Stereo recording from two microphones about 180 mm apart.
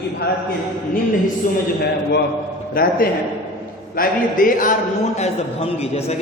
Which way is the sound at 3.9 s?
50° left (ahead or behind).